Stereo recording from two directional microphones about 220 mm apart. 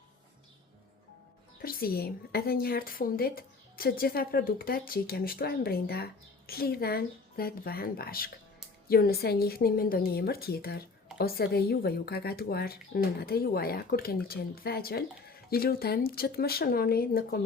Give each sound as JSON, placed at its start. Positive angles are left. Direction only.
{"t": 1.6, "sound": "a woman's voice", "side_deg": 45}